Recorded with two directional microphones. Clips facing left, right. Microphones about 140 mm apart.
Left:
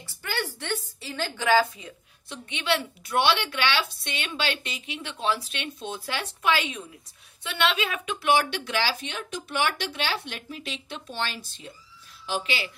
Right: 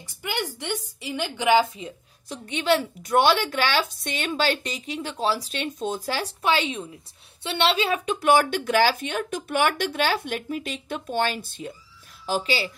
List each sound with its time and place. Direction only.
0.0 s a woman's voice: 15° right (ahead or behind)
2.2 s speech: 40° right (ahead or behind)
12.3 s speech: 35° right (ahead or behind)